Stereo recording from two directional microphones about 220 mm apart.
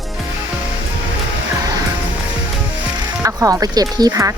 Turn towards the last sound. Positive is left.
turn(degrees=-15)  # may be behind; listen again after turning